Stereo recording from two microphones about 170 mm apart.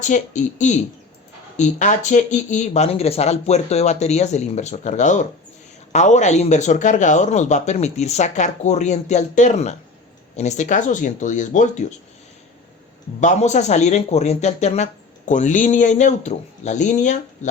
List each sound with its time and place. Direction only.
0.0 s speech: 45° left (ahead or behind)
13.1 s speech: 45° left (ahead or behind)